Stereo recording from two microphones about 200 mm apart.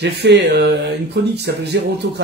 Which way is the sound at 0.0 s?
55° right (ahead or behind).